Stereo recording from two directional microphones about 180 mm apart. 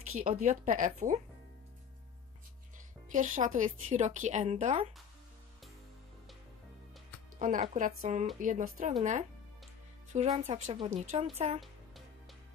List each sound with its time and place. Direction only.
0.2 s a woman's voice: 40° right (ahead or behind)
3.1 s a woman's voice: 45° right (ahead or behind)
7.3 s a woman's voice: 45° right (ahead or behind)
10.1 s speech: 40° right (ahead or behind)